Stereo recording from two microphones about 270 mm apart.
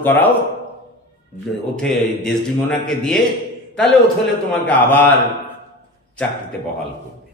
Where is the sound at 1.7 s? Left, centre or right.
Centre.